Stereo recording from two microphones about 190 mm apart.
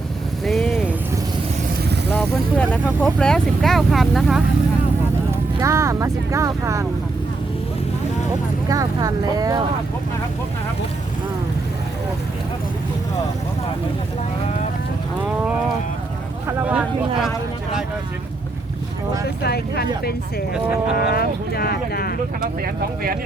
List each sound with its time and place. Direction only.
0.4 s vehicle: centre (ahead or behind)
2.1 s vehicle: 10° left (ahead or behind)
2.8 s speech: centre (ahead or behind)
5.5 s speech: 15° right (ahead or behind)
8.7 s speech: 20° right (ahead or behind)
16.5 s speech: 5° right (ahead or behind)
19.4 s speech: 55° left (ahead or behind)
22.4 s speech: 50° right (ahead or behind)